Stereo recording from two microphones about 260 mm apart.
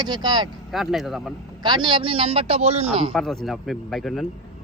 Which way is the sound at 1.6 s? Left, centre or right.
Centre.